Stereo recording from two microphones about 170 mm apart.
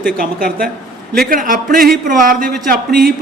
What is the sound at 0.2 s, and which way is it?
A man's voice, 60° right (ahead or behind).